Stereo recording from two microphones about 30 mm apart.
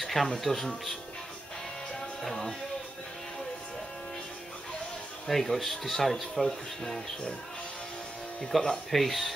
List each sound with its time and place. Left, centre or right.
0.0 s music: centre
0.4 s speech: centre
2.2 s speech: centre
5.3 s speech: centre
8.5 s speech: centre